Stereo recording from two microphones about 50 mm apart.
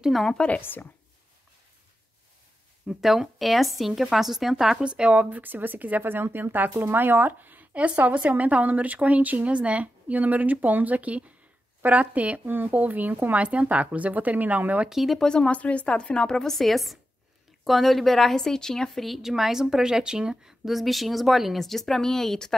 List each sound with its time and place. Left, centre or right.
0.3 s speech: left
0.6 s a woman's voice: left
2.9 s speech: centre
4.7 s speech: centre
5.3 s speech: right
13.4 s speech: right
14.9 s speech: centre
15.1 s a woman's voice: centre
19.0 s a woman's voice: centre
20.6 s speech: centre